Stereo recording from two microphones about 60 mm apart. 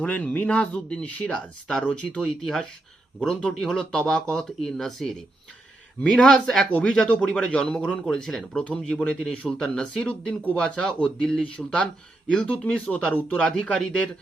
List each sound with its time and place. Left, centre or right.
0.0 s speech: centre